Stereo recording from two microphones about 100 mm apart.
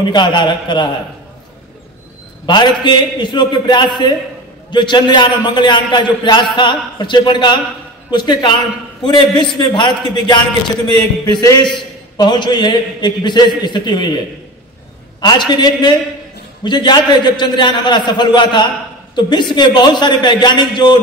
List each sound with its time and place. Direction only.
0.1 s a man's voice: 50° left (ahead or behind)
2.4 s a man's voice: 50° left (ahead or behind)
15.1 s a man's voice: 45° left (ahead or behind)